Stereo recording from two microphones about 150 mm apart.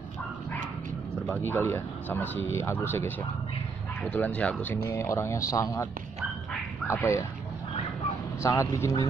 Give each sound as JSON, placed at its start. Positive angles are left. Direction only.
{"t": 1.3, "sound": "speech", "side_deg": 15}
{"t": 6.9, "sound": "speech", "side_deg": 20}
{"t": 8.4, "sound": "speech", "side_deg": 20}